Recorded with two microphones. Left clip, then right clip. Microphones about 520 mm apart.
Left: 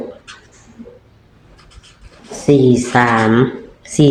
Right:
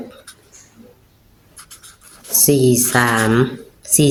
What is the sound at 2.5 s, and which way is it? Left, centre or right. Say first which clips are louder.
Speech: left 4 dB; right.